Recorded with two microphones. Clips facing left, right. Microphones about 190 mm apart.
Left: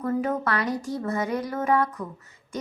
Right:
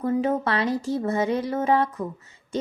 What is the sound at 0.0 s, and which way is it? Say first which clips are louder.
Speech: right 3 dB; 25° right (ahead or behind).